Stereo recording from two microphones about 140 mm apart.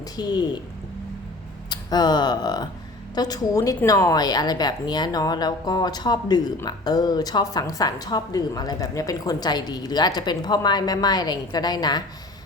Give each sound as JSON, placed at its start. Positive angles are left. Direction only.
{"t": 0.2, "sound": "a woman's voice", "side_deg": 30}
{"t": 1.7, "sound": "a woman's voice", "side_deg": 30}